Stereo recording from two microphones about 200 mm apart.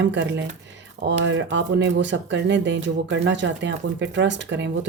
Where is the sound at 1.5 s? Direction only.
65° right (ahead or behind).